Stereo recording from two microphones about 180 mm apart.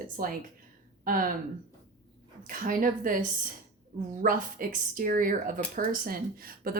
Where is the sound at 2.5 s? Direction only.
50° right (ahead or behind).